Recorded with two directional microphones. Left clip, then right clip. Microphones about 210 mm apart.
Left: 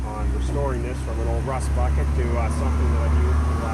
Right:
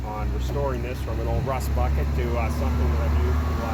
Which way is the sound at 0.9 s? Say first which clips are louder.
Left 1 dB; 60° right (ahead or behind).